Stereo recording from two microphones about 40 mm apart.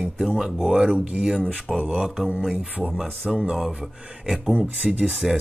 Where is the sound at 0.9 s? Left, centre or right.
Right.